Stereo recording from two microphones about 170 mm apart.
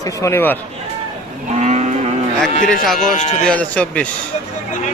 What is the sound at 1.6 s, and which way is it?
Moo, 40° right (ahead or behind).